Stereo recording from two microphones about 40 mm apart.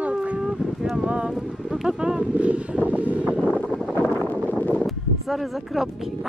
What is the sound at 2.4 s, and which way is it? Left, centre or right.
Speech, right.